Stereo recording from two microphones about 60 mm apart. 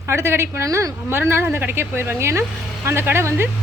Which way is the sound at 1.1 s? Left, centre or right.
Right.